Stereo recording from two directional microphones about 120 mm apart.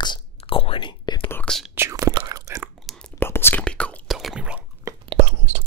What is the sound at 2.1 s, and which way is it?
Chewing, 30° right (ahead or behind).